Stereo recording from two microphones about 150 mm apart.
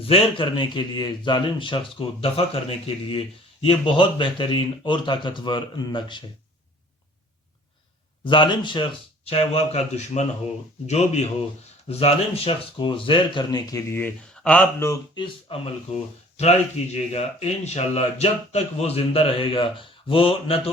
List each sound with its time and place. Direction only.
0.0 s speech: 40° left (ahead or behind)
8.2 s speech: 30° left (ahead or behind)
15.1 s speech: 35° left (ahead or behind)